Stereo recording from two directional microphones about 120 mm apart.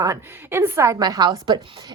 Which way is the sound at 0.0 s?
25° right (ahead or behind).